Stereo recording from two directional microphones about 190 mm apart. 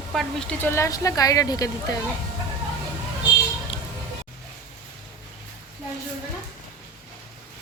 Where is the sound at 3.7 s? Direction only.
30° left (ahead or behind).